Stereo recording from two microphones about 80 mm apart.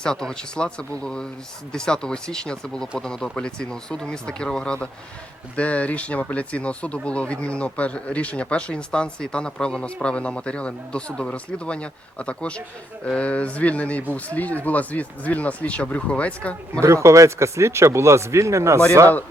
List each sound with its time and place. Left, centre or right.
0.0 s speech: centre
16.8 s speech: right